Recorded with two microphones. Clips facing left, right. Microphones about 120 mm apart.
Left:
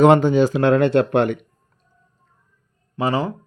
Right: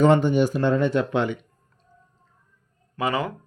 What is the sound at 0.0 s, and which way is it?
Speech, 90° left.